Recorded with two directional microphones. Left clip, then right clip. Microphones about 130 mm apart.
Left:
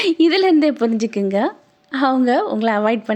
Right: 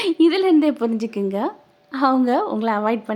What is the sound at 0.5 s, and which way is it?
A woman's voice, 10° left (ahead or behind).